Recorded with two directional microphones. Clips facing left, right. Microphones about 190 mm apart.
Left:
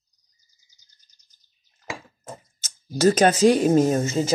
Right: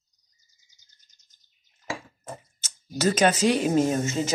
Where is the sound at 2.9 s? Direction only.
45° left (ahead or behind).